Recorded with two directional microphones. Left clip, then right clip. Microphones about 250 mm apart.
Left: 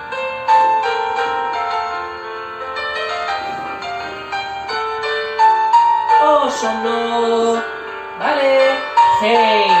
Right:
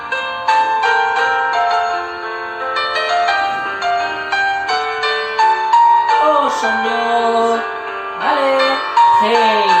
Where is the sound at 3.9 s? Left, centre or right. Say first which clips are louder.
Right 7 dB; right.